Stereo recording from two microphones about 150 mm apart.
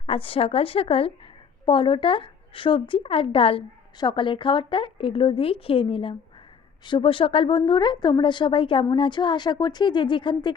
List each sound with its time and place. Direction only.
0.0 s speech: 40° left (ahead or behind)